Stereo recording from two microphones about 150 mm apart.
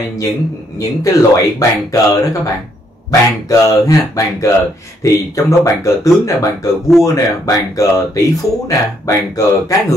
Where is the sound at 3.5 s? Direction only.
25° left (ahead or behind).